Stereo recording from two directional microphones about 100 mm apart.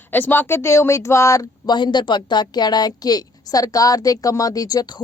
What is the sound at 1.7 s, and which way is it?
A woman's voice, 50° left (ahead or behind).